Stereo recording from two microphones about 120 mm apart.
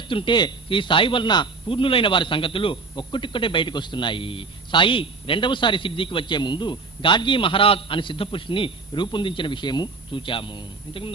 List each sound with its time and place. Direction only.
0.1 s a man's voice: 45° left (ahead or behind)